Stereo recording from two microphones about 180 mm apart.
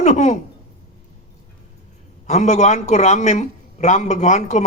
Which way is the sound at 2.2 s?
40° left (ahead or behind).